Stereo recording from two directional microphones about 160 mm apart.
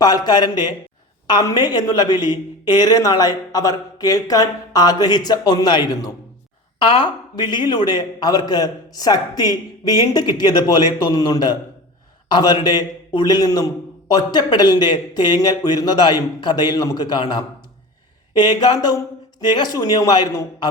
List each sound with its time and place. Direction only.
0.0 s a woman's voice: 25° left (ahead or behind)